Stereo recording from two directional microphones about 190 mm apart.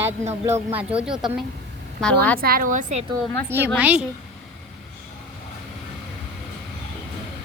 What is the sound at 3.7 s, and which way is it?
Speech, 10° right (ahead or behind).